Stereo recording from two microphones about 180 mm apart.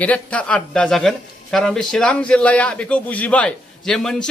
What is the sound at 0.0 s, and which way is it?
A man's voice, 5° left (ahead or behind).